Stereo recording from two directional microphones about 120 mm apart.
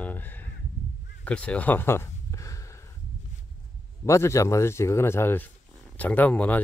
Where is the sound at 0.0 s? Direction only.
15° left (ahead or behind).